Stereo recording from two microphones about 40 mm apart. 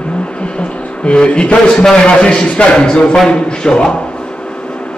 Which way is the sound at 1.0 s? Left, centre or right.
Left.